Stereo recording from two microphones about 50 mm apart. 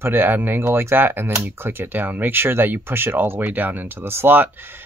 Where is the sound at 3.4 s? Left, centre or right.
Right.